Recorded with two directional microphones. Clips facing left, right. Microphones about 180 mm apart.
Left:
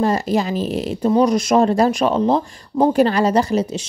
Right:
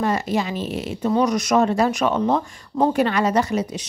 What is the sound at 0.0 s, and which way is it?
Speech, 35° left (ahead or behind).